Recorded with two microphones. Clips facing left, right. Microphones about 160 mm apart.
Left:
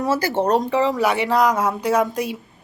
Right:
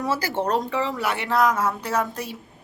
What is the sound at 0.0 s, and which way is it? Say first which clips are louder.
Speech: left 5 dB; 20° left (ahead or behind).